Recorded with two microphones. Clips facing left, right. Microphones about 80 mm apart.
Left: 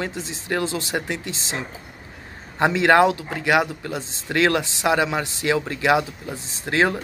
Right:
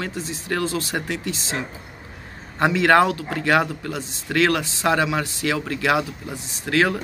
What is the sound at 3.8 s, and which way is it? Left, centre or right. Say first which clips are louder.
Speech: even; left.